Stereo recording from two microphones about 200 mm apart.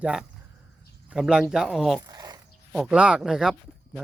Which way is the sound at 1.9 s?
20° right (ahead or behind).